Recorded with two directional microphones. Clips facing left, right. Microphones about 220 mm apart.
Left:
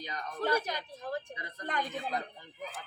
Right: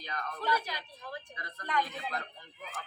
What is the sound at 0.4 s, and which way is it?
Speech, 45° left (ahead or behind).